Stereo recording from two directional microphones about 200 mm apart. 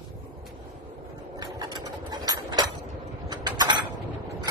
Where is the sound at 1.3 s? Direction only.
20° right (ahead or behind).